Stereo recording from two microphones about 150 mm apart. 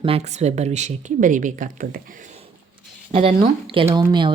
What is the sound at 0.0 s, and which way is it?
Speech, 45° right (ahead or behind).